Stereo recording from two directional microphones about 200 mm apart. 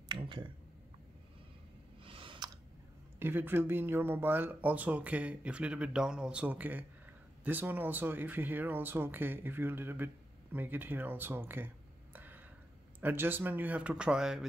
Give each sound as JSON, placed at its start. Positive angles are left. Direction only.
{"t": 0.1, "sound": "speech", "side_deg": -25}
{"t": 2.0, "sound": "a sound", "side_deg": -25}
{"t": 3.2, "sound": "speech", "side_deg": -10}